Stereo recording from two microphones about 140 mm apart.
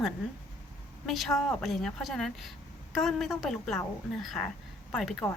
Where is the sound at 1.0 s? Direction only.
Centre (ahead or behind).